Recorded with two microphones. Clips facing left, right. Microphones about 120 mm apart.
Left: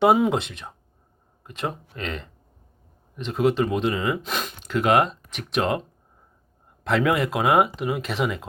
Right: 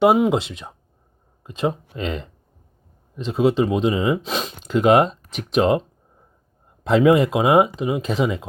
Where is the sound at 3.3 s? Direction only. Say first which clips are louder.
Right 3 dB; 25° right (ahead or behind).